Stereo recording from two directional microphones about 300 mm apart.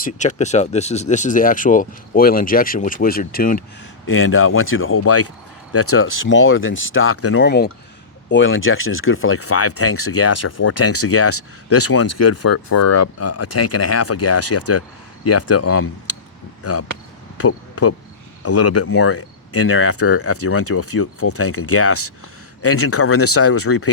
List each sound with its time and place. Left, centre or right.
0.0 s speech: left
4.0 s speech: left
7.4 s speech: left